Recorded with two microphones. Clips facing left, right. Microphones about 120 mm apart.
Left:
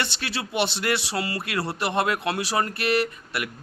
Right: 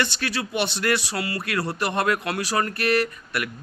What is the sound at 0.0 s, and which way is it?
Speech, 25° left (ahead or behind).